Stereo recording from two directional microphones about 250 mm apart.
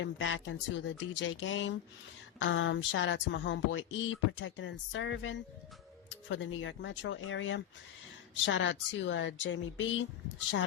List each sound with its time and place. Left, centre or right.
0.0 s speech: left